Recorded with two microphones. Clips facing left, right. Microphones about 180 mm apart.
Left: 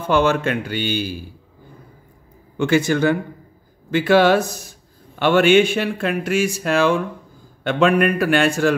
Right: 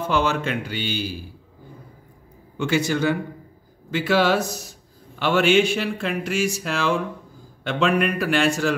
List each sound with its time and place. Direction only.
0.1 s speech: 55° left (ahead or behind)
2.5 s speech: 50° left (ahead or behind)